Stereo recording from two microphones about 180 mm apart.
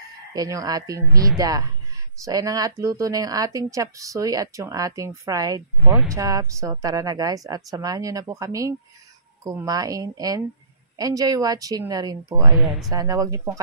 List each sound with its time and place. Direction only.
0.3 s speech: 20° right (ahead or behind)
12.5 s speech: centre (ahead or behind)
12.9 s speech: 20° right (ahead or behind)